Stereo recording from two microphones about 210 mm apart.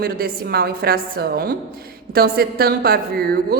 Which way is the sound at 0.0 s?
45° right (ahead or behind).